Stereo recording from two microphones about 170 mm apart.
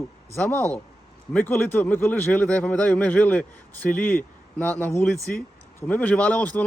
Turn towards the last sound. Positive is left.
turn(degrees=10)  # may be behind; listen again after turning